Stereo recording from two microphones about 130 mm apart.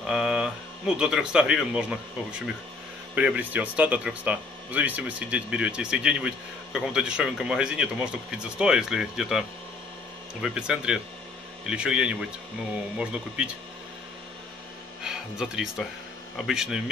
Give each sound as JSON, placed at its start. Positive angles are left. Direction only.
{"t": 0.0, "sound": "speech", "side_deg": -5}
{"t": 10.4, "sound": "speech", "side_deg": -5}
{"t": 15.0, "sound": "speech", "side_deg": -5}